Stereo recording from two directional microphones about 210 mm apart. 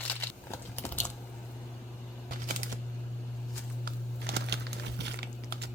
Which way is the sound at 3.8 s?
50° right (ahead or behind).